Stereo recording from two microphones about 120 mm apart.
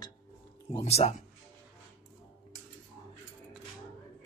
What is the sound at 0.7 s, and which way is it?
Speech, 60° left (ahead or behind).